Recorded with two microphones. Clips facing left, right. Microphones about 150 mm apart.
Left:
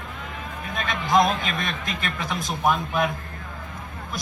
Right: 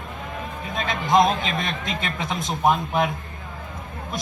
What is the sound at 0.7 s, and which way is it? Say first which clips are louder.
A man's voice: right 2 dB; 25° right (ahead or behind).